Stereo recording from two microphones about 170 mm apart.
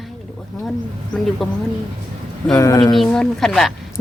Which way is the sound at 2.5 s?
20° left (ahead or behind).